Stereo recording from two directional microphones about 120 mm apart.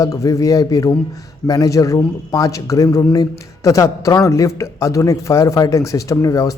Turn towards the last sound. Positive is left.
turn(degrees=30)  # may be behind; listen again after turning